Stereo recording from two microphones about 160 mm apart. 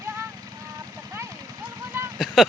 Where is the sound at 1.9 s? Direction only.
15° right (ahead or behind).